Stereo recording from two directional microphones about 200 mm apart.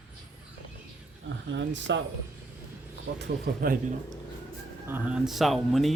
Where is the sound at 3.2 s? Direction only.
45° right (ahead or behind).